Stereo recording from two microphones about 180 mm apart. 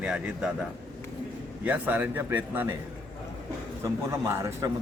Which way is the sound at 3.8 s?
15° right (ahead or behind).